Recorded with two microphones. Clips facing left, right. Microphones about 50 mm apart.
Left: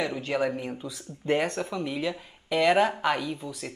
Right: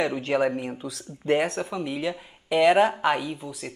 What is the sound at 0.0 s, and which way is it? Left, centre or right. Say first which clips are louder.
Speech: right 4 dB; centre.